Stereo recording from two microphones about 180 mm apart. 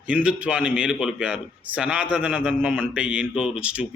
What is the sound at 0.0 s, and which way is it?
Speech, 5° right (ahead or behind).